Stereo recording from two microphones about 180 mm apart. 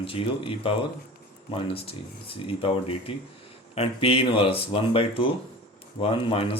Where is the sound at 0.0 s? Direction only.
30° left (ahead or behind).